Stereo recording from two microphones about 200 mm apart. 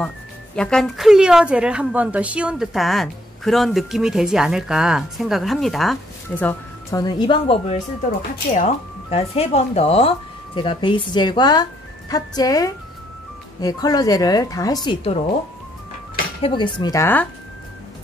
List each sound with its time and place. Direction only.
0.6 s a woman's voice: 5° left (ahead or behind)
14.9 s speech: 30° left (ahead or behind)
16.4 s a woman's voice: 25° left (ahead or behind)